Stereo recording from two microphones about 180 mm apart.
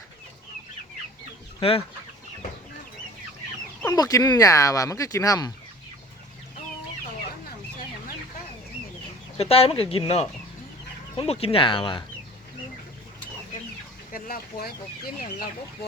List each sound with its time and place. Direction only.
1.6 s speech: 35° left (ahead or behind)
3.8 s speech: 20° left (ahead or behind)
9.4 s speech: 35° left (ahead or behind)
14.1 s speech: 55° left (ahead or behind)